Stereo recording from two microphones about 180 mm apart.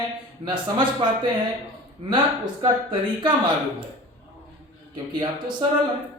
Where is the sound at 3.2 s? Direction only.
25° right (ahead or behind).